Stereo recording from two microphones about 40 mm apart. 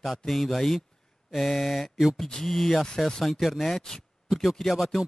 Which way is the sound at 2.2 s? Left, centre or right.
Centre.